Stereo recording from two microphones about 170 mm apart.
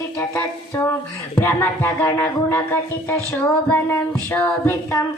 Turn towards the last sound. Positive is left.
turn(degrees=10)  # may be behind; listen again after turning